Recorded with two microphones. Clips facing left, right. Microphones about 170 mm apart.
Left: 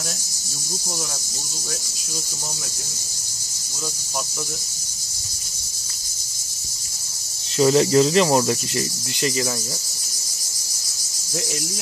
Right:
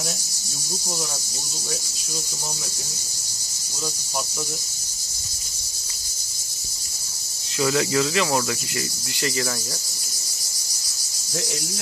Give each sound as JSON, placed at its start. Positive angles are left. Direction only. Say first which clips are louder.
{"t": 7.5, "sound": "speech", "louder": "left 6 dB", "side_deg": 35}